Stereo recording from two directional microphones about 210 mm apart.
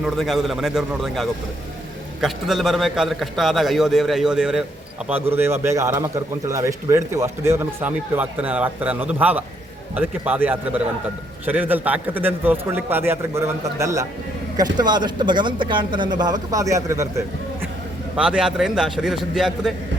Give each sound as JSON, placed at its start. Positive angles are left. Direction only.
{"t": 0.0, "sound": "a man's voice", "side_deg": 0}
{"t": 18.2, "sound": "a man's voice", "side_deg": -5}